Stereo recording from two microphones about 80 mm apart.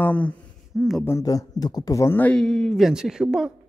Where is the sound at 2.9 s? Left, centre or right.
Centre.